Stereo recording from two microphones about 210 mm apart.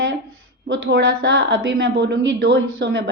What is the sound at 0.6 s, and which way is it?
A woman's voice, 55° right (ahead or behind).